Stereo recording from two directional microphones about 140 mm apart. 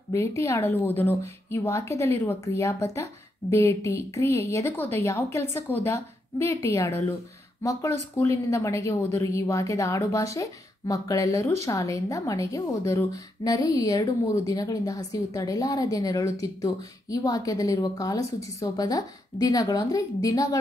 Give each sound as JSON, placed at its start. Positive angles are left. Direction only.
{"t": 0.1, "sound": "a woman's voice", "side_deg": 20}